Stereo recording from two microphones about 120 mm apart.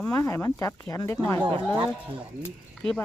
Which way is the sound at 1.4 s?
40° right (ahead or behind).